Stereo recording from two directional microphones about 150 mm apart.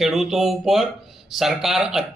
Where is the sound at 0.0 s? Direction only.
Centre (ahead or behind).